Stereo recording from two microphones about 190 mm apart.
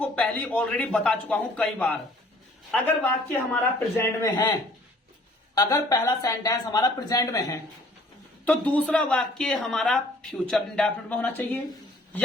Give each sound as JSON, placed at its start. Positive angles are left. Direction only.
{"t": 0.0, "sound": "speech", "side_deg": 5}
{"t": 5.5, "sound": "speech", "side_deg": 20}
{"t": 8.4, "sound": "speech", "side_deg": 5}